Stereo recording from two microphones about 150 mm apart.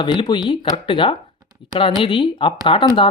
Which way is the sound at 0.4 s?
35° left (ahead or behind).